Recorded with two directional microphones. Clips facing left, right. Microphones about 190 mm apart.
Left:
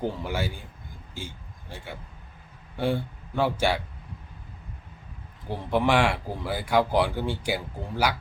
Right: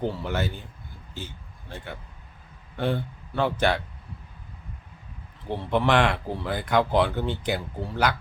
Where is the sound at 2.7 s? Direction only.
10° left (ahead or behind).